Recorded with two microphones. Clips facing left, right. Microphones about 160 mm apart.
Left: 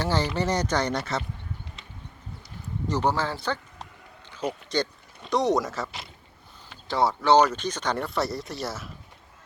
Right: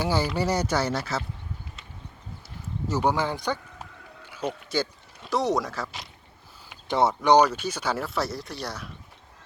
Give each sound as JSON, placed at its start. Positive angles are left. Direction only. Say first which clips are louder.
{"t": 0.0, "sound": "speech", "louder": "right 1 dB", "side_deg": -10}
{"t": 2.6, "sound": "a sound", "louder": "even", "side_deg": -10}
{"t": 4.7, "sound": "speech", "louder": "left 1 dB", "side_deg": -5}
{"t": 6.7, "sound": "speech", "louder": "right 1 dB", "side_deg": -20}